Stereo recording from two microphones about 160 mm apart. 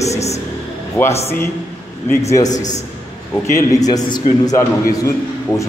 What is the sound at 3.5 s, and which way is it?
A man's voice, 20° left (ahead or behind).